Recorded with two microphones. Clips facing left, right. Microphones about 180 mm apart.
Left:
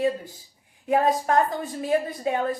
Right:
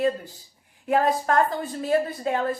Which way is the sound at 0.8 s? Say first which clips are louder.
Even; 20° left (ahead or behind).